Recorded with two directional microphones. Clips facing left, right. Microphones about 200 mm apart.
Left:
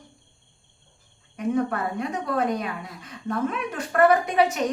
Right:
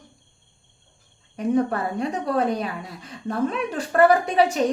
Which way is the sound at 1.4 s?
35° right (ahead or behind).